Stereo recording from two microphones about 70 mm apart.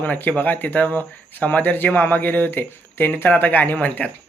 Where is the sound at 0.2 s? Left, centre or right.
Left.